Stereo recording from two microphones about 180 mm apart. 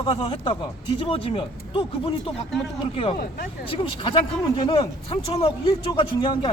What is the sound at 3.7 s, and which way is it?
A man's voice, 30° left (ahead or behind).